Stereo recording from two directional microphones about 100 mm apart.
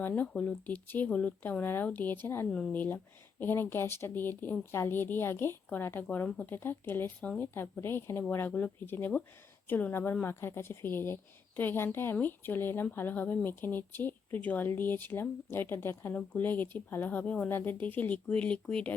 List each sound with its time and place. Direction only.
0.2 s speech: 15° left (ahead or behind)
6.2 s speech: 10° left (ahead or behind)
6.5 s speech: 20° left (ahead or behind)